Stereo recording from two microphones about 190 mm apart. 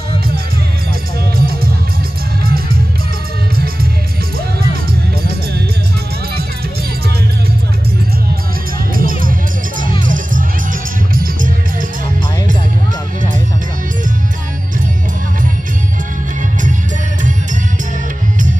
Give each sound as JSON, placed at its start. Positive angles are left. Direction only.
{"t": 1.3, "sound": "music", "side_deg": -50}
{"t": 8.9, "sound": "music", "side_deg": -50}